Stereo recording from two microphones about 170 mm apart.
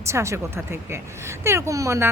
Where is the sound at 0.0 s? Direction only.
15° right (ahead or behind).